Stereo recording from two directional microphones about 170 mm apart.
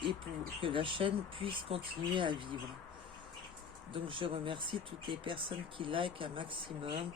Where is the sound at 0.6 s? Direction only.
30° right (ahead or behind).